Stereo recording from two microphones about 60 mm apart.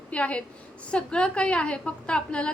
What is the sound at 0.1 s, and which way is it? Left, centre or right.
A woman's voice, left.